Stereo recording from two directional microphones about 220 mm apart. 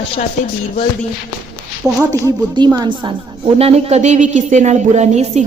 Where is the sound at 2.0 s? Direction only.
15° right (ahead or behind).